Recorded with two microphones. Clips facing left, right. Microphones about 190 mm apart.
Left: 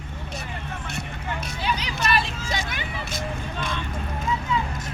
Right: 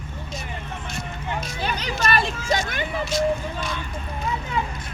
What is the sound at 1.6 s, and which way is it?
Vehicle, 50° right (ahead or behind).